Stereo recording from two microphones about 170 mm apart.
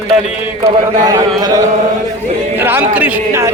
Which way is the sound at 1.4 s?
20° right (ahead or behind).